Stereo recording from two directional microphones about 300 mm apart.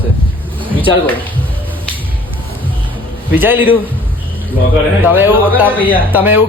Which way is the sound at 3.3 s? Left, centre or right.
Centre.